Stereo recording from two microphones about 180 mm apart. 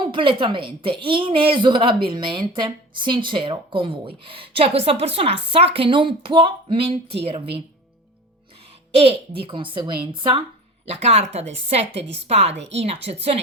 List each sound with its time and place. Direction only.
0.0 s a woman's voice: 30° right (ahead or behind)
8.9 s a woman's voice: 35° right (ahead or behind)